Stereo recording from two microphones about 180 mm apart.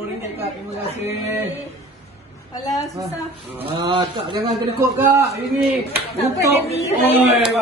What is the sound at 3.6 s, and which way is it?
Speech, 30° right (ahead or behind).